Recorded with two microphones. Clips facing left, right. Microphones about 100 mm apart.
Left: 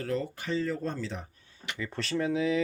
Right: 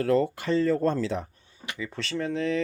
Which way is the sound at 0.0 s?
75° right (ahead or behind).